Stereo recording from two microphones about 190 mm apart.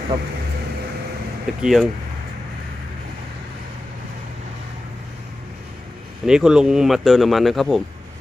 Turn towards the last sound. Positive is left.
turn(degrees=0)  # may be behind; listen again after turning